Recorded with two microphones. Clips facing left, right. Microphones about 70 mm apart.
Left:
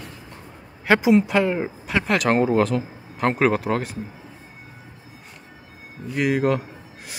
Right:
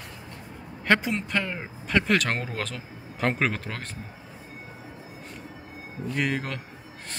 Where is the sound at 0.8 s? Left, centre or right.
Centre.